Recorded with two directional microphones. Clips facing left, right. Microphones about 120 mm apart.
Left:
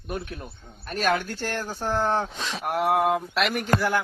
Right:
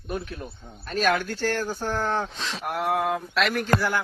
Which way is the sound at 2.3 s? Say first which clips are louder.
Left 2 dB; 10° left (ahead or behind).